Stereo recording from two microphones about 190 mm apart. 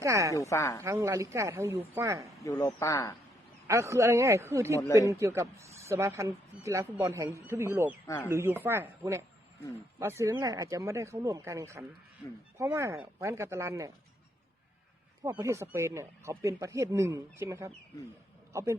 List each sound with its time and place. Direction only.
0.0 s speech: 15° right (ahead or behind)
0.3 s speech: 15° left (ahead or behind)
0.8 s speech: 15° right (ahead or behind)
2.4 s speech: 15° left (ahead or behind)
3.7 s speech: 15° right (ahead or behind)
8.0 s speech: 10° left (ahead or behind)
8.3 s speech: 15° right (ahead or behind)
15.2 s a man's voice: 15° right (ahead or behind)